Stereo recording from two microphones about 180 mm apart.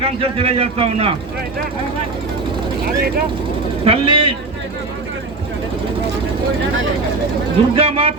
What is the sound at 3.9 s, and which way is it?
Speech, 30° right (ahead or behind).